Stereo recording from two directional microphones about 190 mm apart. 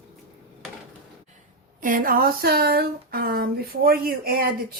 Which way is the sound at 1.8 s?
45° right (ahead or behind).